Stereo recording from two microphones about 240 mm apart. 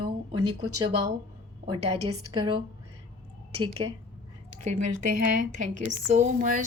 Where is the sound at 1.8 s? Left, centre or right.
Right.